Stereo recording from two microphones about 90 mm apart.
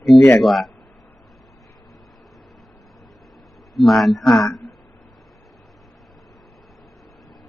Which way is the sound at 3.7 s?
Centre (ahead or behind).